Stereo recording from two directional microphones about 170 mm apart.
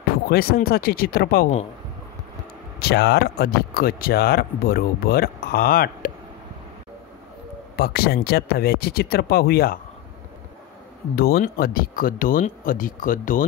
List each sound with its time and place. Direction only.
0.3 s speech: 60° left (ahead or behind)
2.8 s speech: 70° left (ahead or behind)
7.7 s speech: 65° left (ahead or behind)
11.1 s speech: 65° left (ahead or behind)